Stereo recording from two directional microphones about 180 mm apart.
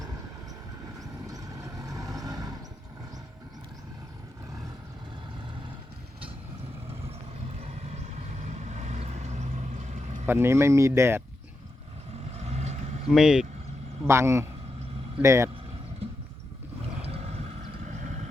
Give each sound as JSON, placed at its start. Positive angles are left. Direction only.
{"t": 1.3, "sound": "vehicle", "side_deg": -20}
{"t": 7.6, "sound": "vehicle", "side_deg": -35}
{"t": 10.2, "sound": "speech", "side_deg": -15}
{"t": 12.3, "sound": "vehicle", "side_deg": -35}
{"t": 13.1, "sound": "speech", "side_deg": -5}
{"t": 14.1, "sound": "speech", "side_deg": -15}
{"t": 17.0, "sound": "vehicle", "side_deg": -35}